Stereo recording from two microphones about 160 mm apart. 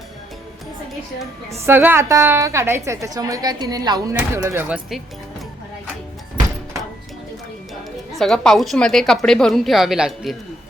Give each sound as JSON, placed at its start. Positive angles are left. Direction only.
{"t": 1.6, "sound": "a woman's voice", "side_deg": -15}
{"t": 8.2, "sound": "a woman's voice", "side_deg": 0}